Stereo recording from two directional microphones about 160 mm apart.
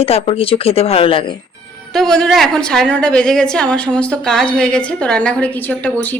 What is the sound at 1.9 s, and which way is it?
A woman's voice, 5° left (ahead or behind).